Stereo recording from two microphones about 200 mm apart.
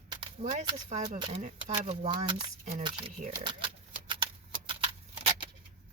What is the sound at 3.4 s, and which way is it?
Typewriter, 25° right (ahead or behind).